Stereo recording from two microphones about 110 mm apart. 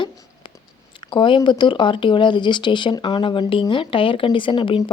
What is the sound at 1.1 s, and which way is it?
Speech, 50° left (ahead or behind).